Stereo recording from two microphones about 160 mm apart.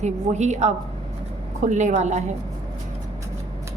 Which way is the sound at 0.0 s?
45° right (ahead or behind).